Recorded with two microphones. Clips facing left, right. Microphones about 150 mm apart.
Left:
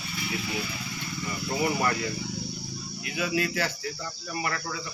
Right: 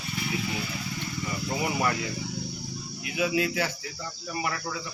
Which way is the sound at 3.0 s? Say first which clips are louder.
Right 2 dB; 10° right (ahead or behind).